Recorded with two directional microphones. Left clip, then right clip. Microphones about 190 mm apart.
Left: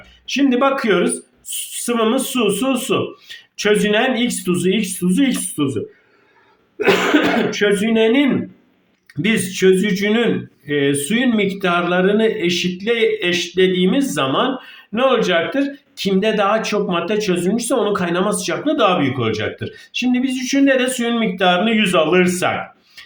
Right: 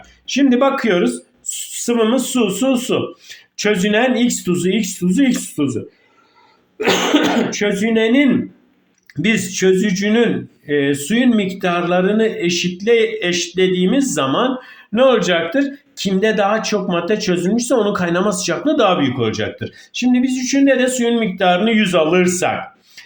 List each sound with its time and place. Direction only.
0.3 s speech: 20° right (ahead or behind)
7.6 s speech: 20° right (ahead or behind)